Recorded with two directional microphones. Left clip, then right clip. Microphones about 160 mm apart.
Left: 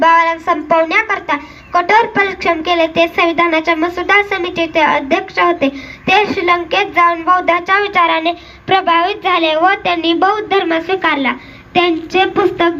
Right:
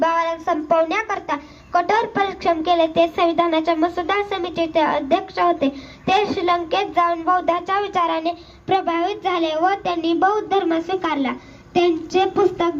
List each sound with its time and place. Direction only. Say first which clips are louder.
0.0 s speech: left 9 dB; 15° left (ahead or behind)